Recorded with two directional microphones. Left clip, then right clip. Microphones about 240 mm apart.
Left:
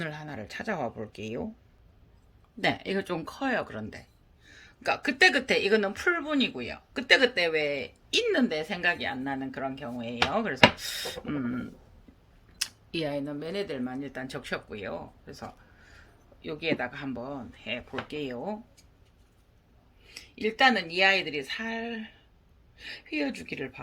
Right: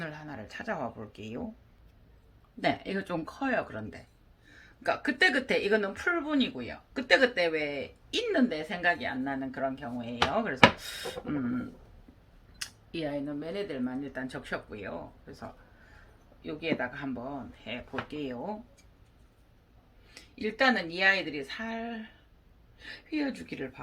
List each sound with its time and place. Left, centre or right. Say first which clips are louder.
0.0 s speech: left 3 dB; left
2.6 s speech: left 2 dB; left
12.9 s speech: left 1 dB; left
20.1 s a sound: left 4 dB; left
20.6 s speech: left 4 dB; left